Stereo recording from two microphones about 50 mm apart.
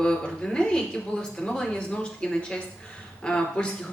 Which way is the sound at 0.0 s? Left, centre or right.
Centre.